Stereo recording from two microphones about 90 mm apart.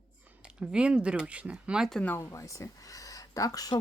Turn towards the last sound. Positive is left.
turn(degrees=40)  # may be behind; listen again after turning